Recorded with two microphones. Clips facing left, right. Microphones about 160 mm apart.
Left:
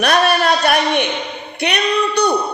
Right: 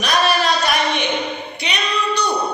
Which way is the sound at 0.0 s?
60° left (ahead or behind).